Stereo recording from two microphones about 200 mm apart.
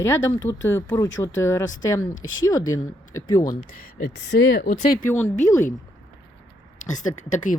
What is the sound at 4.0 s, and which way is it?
Speech, 60° left (ahead or behind).